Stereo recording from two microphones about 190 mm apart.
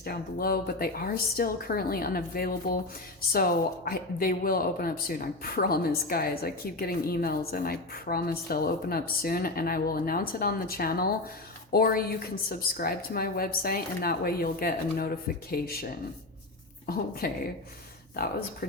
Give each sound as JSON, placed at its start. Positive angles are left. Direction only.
{"t": 0.0, "sound": "speech", "side_deg": 55}
{"t": 18.6, "sound": "speech", "side_deg": 50}